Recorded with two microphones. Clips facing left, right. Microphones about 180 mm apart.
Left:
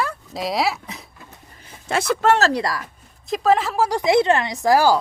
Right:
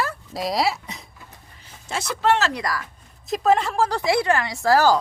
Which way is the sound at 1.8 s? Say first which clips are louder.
Left 4 dB; 55° left (ahead or behind).